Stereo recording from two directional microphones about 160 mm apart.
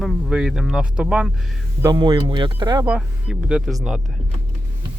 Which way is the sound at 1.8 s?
25° right (ahead or behind).